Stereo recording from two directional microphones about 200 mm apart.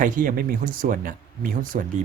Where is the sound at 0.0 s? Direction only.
45° right (ahead or behind).